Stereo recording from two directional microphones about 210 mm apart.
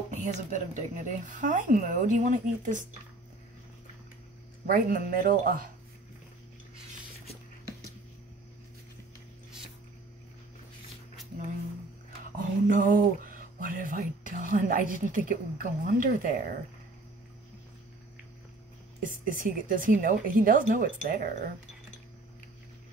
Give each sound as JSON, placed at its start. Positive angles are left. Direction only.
{"t": 0.1, "sound": "speech", "side_deg": -35}
{"t": 4.6, "sound": "speech", "side_deg": -40}
{"t": 12.4, "sound": "speech", "side_deg": -40}
{"t": 18.9, "sound": "speech", "side_deg": -40}